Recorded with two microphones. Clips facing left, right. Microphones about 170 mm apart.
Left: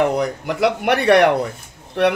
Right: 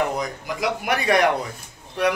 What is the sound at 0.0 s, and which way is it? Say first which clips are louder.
A man's voice: left 6 dB; 70° left (ahead or behind).